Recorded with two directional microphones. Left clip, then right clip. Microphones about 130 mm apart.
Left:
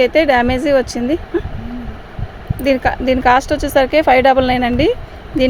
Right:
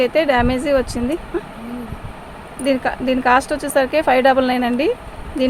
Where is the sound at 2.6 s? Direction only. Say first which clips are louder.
Left 4 dB; 75° left (ahead or behind).